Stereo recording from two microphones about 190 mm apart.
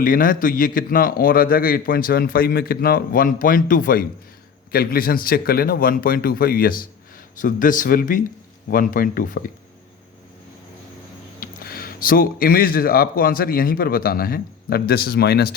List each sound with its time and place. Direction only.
0.0 s a man's voice: 45° left (ahead or behind)
11.3 s speech: 50° left (ahead or behind)